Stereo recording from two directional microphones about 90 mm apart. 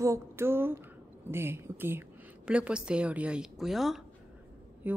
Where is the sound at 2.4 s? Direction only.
10° right (ahead or behind).